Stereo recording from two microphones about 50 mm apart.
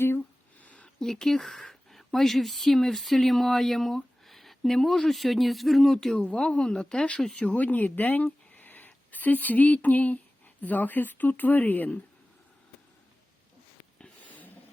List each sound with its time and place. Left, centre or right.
0.2 s a sound: left
0.9 s a woman's voice: centre
7.2 s speech: centre
7.4 s speech: left